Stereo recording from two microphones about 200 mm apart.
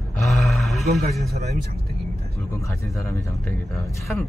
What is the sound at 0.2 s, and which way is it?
Roar, centre (ahead or behind).